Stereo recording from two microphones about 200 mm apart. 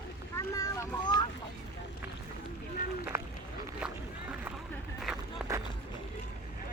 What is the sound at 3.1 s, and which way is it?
Run, 15° right (ahead or behind).